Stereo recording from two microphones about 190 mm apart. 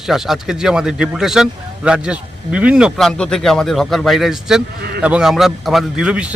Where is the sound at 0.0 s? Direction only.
Centre (ahead or behind).